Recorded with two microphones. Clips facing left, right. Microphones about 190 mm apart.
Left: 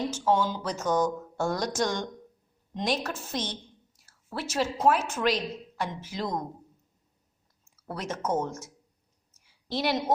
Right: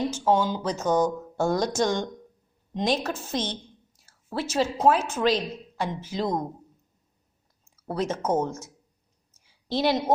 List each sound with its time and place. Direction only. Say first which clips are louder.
0.3 s speech: right 2 dB; 20° right (ahead or behind)
7.9 s speech: right 5 dB; 25° right (ahead or behind)
9.7 s speech: right 4 dB; 25° right (ahead or behind)